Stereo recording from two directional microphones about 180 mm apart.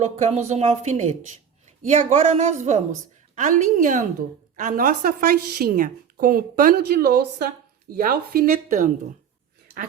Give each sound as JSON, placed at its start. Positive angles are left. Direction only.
{"t": 0.0, "sound": "a woman's voice", "side_deg": -40}